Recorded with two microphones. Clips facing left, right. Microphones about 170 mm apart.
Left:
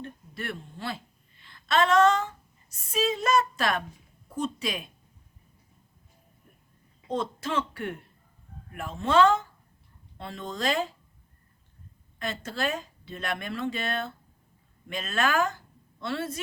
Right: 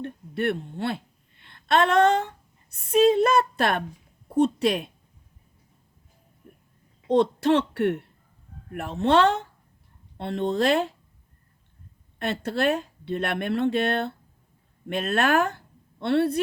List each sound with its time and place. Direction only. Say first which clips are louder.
0.0 s a woman's voice: right 11 dB; 60° right (ahead or behind)
7.1 s speech: right 10 dB; 70° right (ahead or behind)
12.2 s speech: right 7 dB; 65° right (ahead or behind)